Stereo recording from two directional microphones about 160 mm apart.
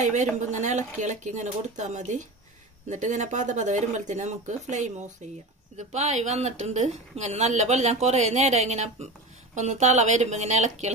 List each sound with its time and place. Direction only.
0.0 s a woman's voice: 45° right (ahead or behind)